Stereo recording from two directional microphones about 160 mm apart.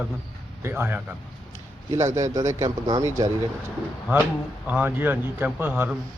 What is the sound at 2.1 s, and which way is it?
Speech, 20° right (ahead or behind).